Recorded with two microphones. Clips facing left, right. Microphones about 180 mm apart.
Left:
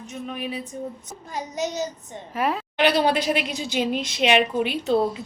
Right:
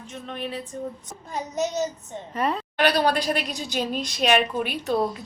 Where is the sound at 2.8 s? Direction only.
20° left (ahead or behind).